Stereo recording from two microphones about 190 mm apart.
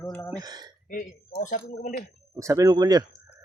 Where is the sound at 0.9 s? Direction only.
45° left (ahead or behind).